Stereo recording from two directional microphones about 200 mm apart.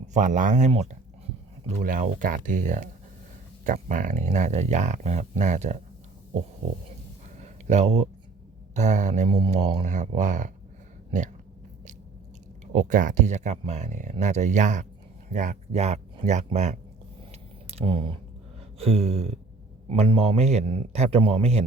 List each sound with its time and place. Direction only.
0.1 s speech: 40° right (ahead or behind)
7.4 s a sound: 35° right (ahead or behind)
8.7 s speech: 35° right (ahead or behind)
12.7 s speech: 40° right (ahead or behind)
18.8 s a sound: 30° right (ahead or behind)
19.9 s speech: 25° right (ahead or behind)